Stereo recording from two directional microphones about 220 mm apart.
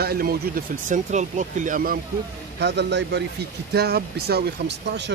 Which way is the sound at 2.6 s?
50° right (ahead or behind).